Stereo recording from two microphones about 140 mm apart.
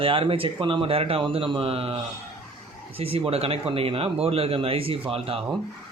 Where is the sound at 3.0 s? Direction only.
45° right (ahead or behind).